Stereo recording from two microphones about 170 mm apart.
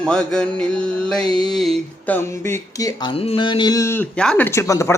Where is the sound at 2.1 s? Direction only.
15° left (ahead or behind).